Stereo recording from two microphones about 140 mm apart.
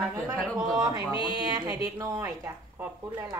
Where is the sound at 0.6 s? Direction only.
25° right (ahead or behind).